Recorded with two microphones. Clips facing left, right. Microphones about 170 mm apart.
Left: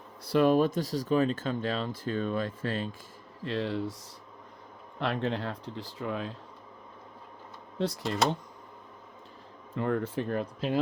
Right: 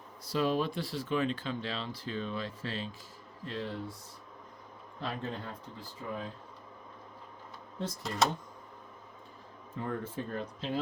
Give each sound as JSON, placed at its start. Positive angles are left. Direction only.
{"t": 0.3, "sound": "speech", "side_deg": 55}
{"t": 3.4, "sound": "speech", "side_deg": 85}
{"t": 4.9, "sound": "speech", "side_deg": 70}
{"t": 7.8, "sound": "speech", "side_deg": 75}
{"t": 9.7, "sound": "speech", "side_deg": 75}